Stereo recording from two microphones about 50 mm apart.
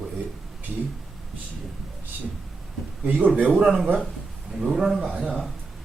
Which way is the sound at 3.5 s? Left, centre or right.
Right.